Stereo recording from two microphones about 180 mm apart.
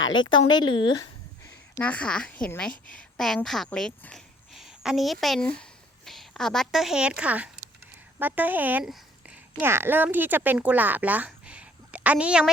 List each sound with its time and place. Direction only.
0.4 s speech: 25° left (ahead or behind)
1.5 s a woman's voice: 10° left (ahead or behind); by 12.5 s 5° right (ahead or behind)